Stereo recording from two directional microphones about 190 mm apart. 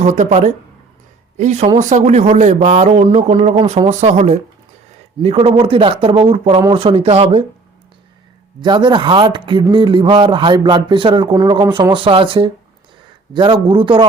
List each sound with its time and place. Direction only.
0.0 s speech: 40° right (ahead or behind)
8.6 s speech: 25° right (ahead or behind)